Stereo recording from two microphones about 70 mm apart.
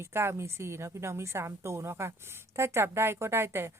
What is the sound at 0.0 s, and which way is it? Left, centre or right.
A woman's voice, right.